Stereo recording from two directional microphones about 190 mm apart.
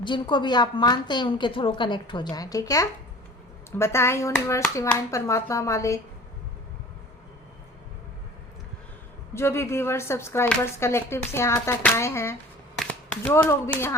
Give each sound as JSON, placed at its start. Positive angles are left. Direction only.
{"t": 0.0, "sound": "a woman's voice", "side_deg": 25}
{"t": 9.3, "sound": "speech", "side_deg": 15}